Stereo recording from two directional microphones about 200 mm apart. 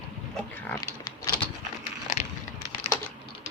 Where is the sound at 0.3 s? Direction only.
10° left (ahead or behind).